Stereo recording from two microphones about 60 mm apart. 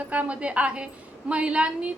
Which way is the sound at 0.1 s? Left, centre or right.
Right.